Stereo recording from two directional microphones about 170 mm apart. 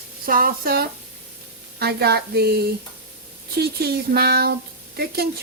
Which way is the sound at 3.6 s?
65° right (ahead or behind).